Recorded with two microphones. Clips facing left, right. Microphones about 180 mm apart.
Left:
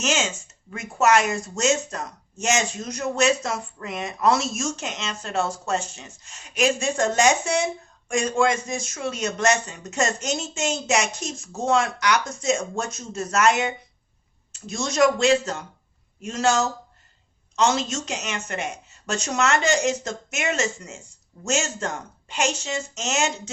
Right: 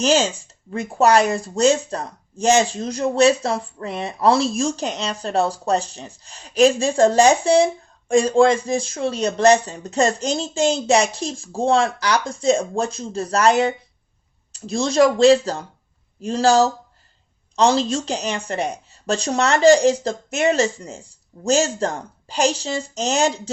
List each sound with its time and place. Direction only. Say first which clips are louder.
0.0 s speech: right 7 dB; 35° right (ahead or behind)